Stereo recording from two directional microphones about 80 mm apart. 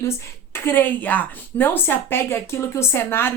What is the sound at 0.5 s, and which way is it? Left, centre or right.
A woman's voice, left.